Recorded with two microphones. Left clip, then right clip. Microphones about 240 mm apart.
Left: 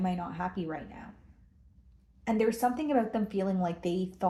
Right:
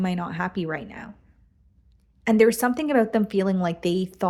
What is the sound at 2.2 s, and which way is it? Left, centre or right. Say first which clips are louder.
A woman's voice: right 9 dB; right.